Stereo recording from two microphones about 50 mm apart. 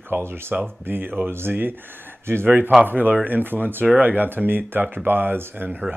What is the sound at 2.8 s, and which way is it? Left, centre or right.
Speech, right.